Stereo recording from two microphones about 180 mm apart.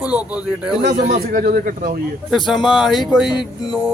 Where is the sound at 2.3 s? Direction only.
Centre (ahead or behind).